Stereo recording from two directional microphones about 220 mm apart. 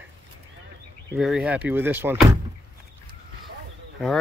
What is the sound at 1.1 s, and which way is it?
Speech, centre (ahead or behind).